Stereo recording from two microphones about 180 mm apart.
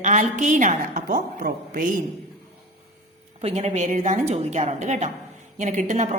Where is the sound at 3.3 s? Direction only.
35° right (ahead or behind).